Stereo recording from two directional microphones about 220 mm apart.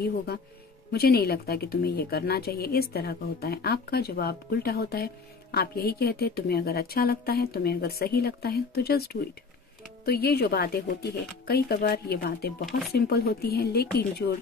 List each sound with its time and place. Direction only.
0.9 s a woman's voice: 45° left (ahead or behind)